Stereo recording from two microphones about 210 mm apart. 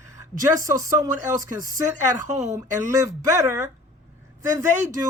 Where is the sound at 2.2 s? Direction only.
35° right (ahead or behind).